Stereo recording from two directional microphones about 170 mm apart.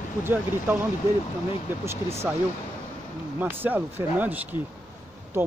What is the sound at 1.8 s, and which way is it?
Speech, 15° right (ahead or behind).